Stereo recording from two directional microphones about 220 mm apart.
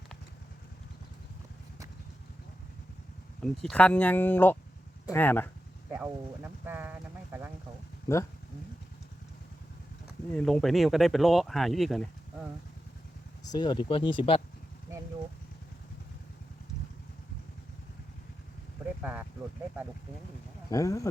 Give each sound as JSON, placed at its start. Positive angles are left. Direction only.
{"t": 3.4, "sound": "speech", "side_deg": 5}
{"t": 5.9, "sound": "speech", "side_deg": -10}
{"t": 8.0, "sound": "speech", "side_deg": 15}
{"t": 10.3, "sound": "speech", "side_deg": 0}
{"t": 13.4, "sound": "speech", "side_deg": 20}
{"t": 19.0, "sound": "speech", "side_deg": -10}
{"t": 20.7, "sound": "speech", "side_deg": 15}